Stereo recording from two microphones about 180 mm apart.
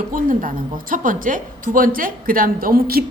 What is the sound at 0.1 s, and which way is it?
A woman's voice, 50° right (ahead or behind).